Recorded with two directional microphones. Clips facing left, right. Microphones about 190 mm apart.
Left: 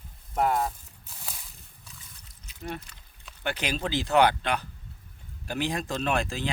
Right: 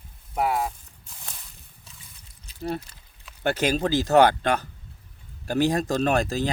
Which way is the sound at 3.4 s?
45° right (ahead or behind).